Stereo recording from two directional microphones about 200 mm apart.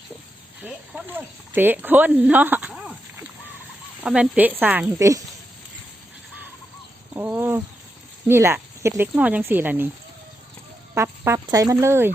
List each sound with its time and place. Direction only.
0.6 s speech: 10° right (ahead or behind)
7.1 s a sound: 10° right (ahead or behind)
8.3 s speech: 10° right (ahead or behind)
10.9 s speech: 15° right (ahead or behind)